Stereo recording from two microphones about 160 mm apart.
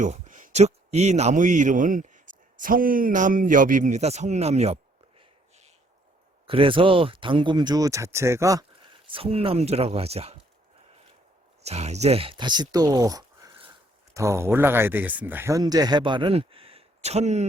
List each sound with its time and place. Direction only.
0.0 s speech: 50° right (ahead or behind)
6.5 s speech: 35° right (ahead or behind)
11.6 s speech: 40° right (ahead or behind)